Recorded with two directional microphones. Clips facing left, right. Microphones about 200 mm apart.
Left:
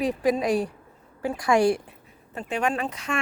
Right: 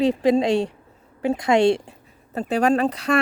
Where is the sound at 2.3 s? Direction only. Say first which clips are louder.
Right 7 dB; 35° right (ahead or behind).